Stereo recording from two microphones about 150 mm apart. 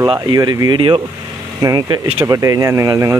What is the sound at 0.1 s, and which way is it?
Speech, 30° right (ahead or behind).